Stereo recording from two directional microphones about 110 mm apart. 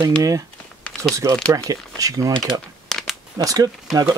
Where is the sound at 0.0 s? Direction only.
30° right (ahead or behind).